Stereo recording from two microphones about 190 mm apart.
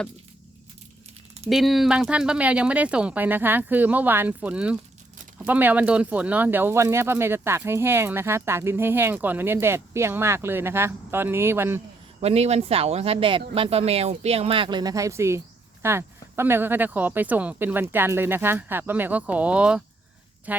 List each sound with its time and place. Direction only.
1.5 s speech: centre (ahead or behind)
12.2 s speech: 35° right (ahead or behind); by 20.6 s 10° right (ahead or behind)